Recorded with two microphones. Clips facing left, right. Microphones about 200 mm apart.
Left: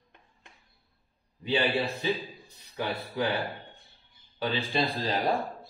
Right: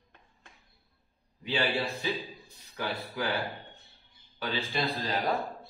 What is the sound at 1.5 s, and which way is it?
A man's voice, 20° left (ahead or behind).